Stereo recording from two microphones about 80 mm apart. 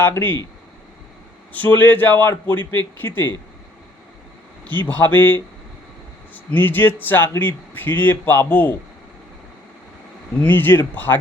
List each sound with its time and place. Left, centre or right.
0.0 s speech: left
1.5 s speech: left
4.6 s a man's voice: right
4.9 s speech: left
10.4 s speech: left